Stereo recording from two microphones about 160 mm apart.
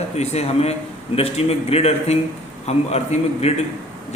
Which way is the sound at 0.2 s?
40° left (ahead or behind).